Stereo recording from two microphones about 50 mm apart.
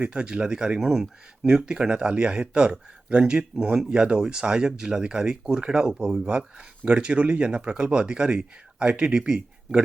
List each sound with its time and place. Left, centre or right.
0.0 s speech: centre